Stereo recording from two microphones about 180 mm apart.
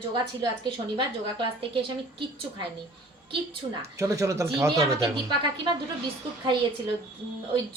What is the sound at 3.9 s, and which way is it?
A man's voice, 15° right (ahead or behind).